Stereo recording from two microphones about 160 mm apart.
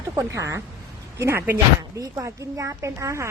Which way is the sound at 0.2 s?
20° right (ahead or behind).